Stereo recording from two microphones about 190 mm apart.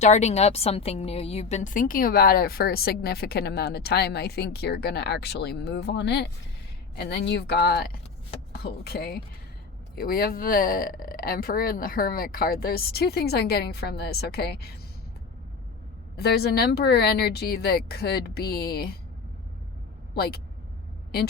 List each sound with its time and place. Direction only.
0.0 s a woman's voice: 35° left (ahead or behind); by 14.8 s 55° left (ahead or behind)
16.1 s a woman's voice: 55° left (ahead or behind)
20.1 s a woman's voice: 55° left (ahead or behind)